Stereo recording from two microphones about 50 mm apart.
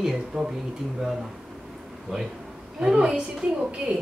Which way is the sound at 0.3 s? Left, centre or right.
Centre.